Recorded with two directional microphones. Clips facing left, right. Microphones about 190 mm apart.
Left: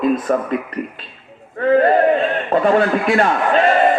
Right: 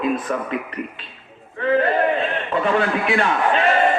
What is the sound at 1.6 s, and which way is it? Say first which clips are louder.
A man's voice: left 5 dB; 45° left (ahead or behind).